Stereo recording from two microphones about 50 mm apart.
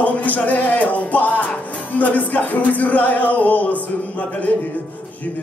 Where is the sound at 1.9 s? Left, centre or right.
Left.